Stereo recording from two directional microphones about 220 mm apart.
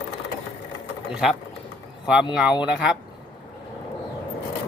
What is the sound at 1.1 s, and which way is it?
Speech, centre (ahead or behind).